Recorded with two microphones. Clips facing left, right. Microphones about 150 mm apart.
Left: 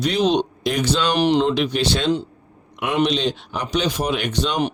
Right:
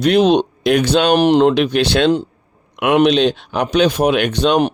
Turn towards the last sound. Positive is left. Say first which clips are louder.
# right 7 dB
turn(degrees=-60)  # may be behind; listen again after turning